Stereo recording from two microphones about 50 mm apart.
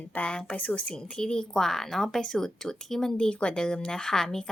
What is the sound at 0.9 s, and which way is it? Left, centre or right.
A woman's voice, centre.